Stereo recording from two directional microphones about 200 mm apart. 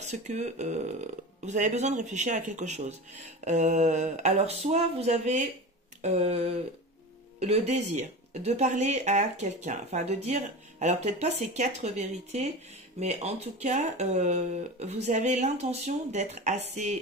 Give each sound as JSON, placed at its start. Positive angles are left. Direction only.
{"t": 0.0, "sound": "speech", "side_deg": -35}